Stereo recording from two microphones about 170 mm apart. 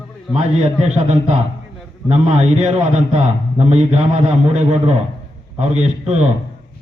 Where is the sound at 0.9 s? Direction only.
40° right (ahead or behind).